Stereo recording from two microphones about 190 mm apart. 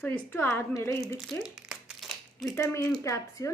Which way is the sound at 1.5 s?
Centre (ahead or behind).